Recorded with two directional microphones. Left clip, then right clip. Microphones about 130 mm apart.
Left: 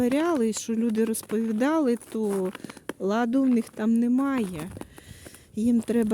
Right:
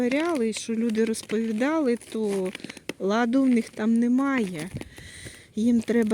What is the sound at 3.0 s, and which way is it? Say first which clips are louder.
Speech: right 1 dB; 15° left (ahead or behind).